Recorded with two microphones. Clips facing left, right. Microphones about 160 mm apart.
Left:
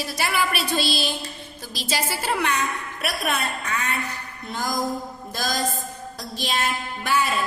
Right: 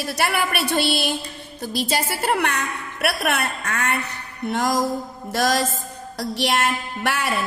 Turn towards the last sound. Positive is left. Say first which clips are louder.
# left 1 dB
turn(degrees=-70)  # may be behind; listen again after turning